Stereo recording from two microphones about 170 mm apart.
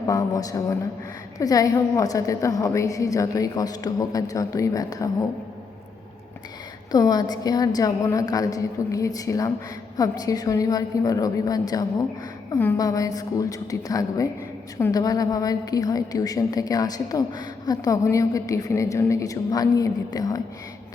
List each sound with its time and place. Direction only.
0.1 s a woman's voice: 20° left (ahead or behind)
6.9 s a woman's voice: 20° left (ahead or behind)